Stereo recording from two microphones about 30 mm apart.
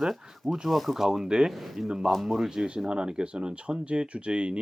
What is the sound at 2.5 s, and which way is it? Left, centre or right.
Speech, right.